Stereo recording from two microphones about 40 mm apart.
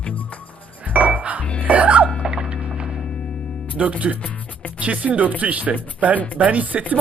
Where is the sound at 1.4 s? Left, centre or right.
Left.